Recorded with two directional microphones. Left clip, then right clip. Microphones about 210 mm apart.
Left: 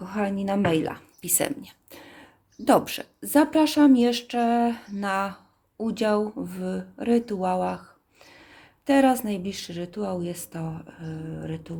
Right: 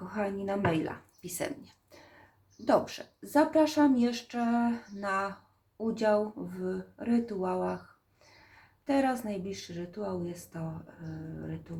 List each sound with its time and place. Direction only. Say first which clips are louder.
0.0 s speech: left 5 dB; 45° left (ahead or behind)
8.9 s speech: left 8 dB; 50° left (ahead or behind)